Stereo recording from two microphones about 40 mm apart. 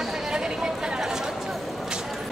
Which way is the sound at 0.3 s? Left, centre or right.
Centre.